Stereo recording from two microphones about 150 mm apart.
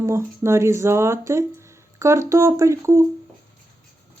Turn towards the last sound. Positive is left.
turn(degrees=-20)  # may be behind; listen again after turning